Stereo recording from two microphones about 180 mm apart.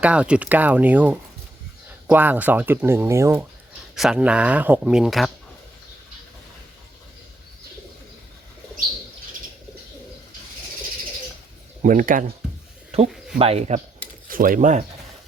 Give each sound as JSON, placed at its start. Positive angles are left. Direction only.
{"t": 0.0, "sound": "speech", "side_deg": -5}
{"t": 3.9, "sound": "speech", "side_deg": 0}
{"t": 11.8, "sound": "speech", "side_deg": -45}
{"t": 13.1, "sound": "a sound", "side_deg": 0}
{"t": 13.4, "sound": "speech", "side_deg": -35}
{"t": 14.3, "sound": "speech", "side_deg": -50}